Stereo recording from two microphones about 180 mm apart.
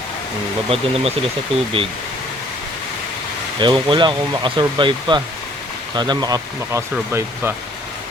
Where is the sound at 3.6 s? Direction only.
25° right (ahead or behind).